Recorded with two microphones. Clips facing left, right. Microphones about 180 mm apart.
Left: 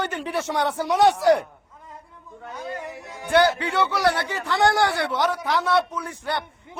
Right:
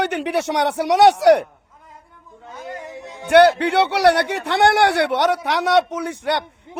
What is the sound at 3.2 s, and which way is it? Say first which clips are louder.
Speech: right 7 dB; 70° right (ahead or behind).